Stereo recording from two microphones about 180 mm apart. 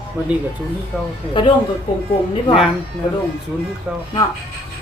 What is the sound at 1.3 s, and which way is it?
Speech, 25° left (ahead or behind).